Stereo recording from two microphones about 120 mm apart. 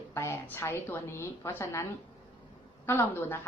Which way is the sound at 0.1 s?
20° left (ahead or behind).